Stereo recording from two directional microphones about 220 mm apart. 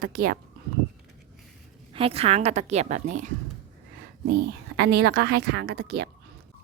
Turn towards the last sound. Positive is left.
turn(degrees=-45)  # may be behind; listen again after turning